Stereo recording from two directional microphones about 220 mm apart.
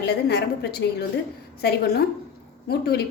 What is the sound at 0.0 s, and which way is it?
A woman's voice, 50° left (ahead or behind).